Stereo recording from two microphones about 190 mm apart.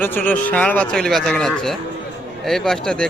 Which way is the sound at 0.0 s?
10° left (ahead or behind).